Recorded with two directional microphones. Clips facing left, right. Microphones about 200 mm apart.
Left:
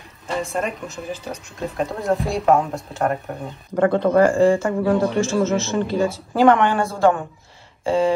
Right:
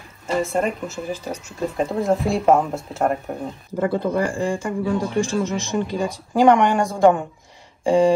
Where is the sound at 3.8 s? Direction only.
65° left (ahead or behind).